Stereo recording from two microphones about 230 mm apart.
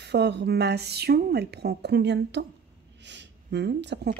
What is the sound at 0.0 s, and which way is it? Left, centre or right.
Speech, right.